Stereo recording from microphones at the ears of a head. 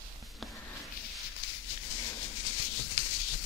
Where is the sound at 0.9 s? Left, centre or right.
Left.